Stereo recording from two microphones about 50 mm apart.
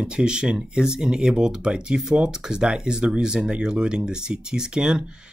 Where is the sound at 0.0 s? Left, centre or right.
Centre.